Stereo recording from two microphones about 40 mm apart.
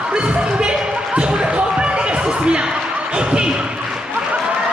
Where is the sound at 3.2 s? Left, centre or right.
Right.